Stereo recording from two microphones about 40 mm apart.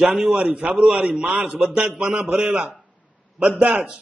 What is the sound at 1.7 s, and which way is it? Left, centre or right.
Speech, centre.